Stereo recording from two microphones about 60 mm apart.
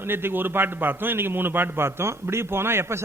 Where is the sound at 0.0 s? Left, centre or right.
Right.